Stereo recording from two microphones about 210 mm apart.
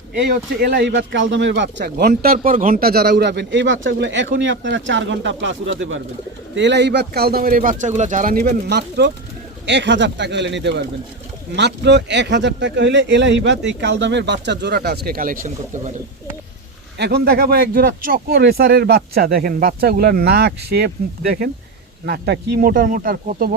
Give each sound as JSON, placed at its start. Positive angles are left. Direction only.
{"t": 0.2, "sound": "speech", "side_deg": -45}
{"t": 17.0, "sound": "speech", "side_deg": -50}